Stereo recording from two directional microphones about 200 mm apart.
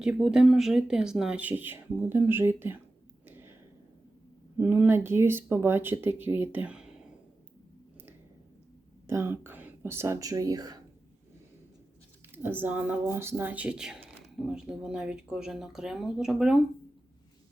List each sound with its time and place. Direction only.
0.0 s speech: 5° right (ahead or behind)
3.2 s a sound: 10° right (ahead or behind)
4.5 s speech: 10° right (ahead or behind)
9.0 s speech: 10° right (ahead or behind)
12.3 s speech: 10° right (ahead or behind)